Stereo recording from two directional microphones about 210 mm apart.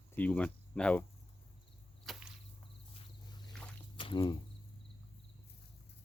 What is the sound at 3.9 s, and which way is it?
Insect, 25° left (ahead or behind).